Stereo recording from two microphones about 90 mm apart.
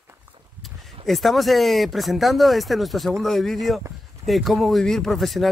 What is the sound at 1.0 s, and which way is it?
Speech, centre (ahead or behind).